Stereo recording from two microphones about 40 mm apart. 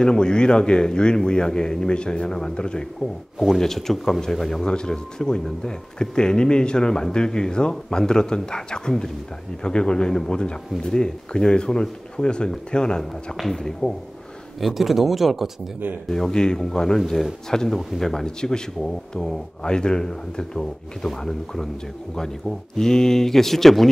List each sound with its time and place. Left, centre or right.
0.0 s speech: centre
3.5 s speech: centre
4.6 s speech: centre
14.6 s speech: centre
16.1 s speech: centre
18.2 s speech: centre
22.8 s speech: centre